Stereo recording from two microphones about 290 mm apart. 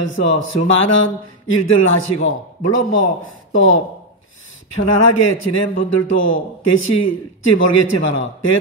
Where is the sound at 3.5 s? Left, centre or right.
Left.